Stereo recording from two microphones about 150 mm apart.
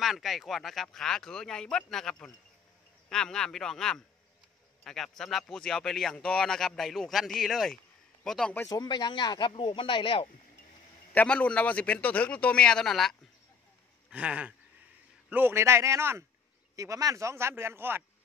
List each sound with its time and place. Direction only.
0.0 s speech: centre (ahead or behind)
8.5 s speech: 25° left (ahead or behind)
11.1 s a man's voice: 10° left (ahead or behind)
14.1 s speech: 10° right (ahead or behind)